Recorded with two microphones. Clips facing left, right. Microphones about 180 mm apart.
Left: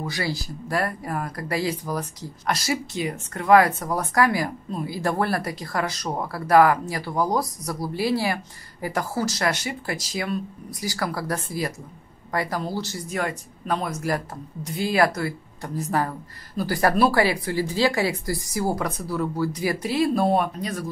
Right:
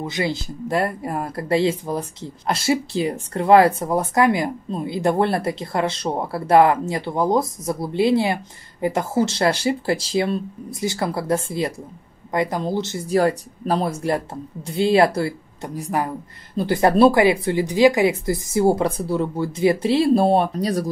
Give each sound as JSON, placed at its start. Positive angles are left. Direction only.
{"t": 0.0, "sound": "speech", "side_deg": -20}
{"t": 13.1, "sound": "speech", "side_deg": -35}
{"t": 15.7, "sound": "speech", "side_deg": -15}